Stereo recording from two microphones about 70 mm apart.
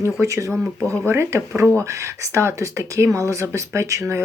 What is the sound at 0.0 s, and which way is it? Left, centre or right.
Speech, right.